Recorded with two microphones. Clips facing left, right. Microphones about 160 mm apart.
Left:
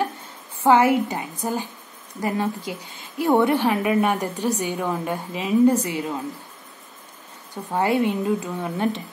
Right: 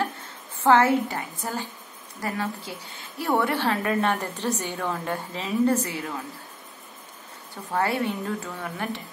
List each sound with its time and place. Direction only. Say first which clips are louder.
0.7 s a woman's voice: left 2 dB; 15° left (ahead or behind)
7.7 s a woman's voice: left 5 dB; 15° left (ahead or behind)